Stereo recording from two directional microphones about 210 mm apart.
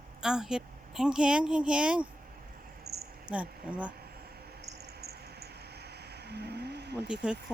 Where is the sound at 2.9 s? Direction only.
85° right.